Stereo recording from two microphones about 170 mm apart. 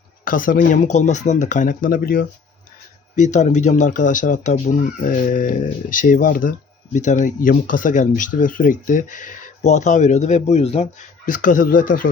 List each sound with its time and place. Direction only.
0.3 s speech: 55° left (ahead or behind)
3.2 s speech: 45° left (ahead or behind)
11.3 s speech: 50° left (ahead or behind)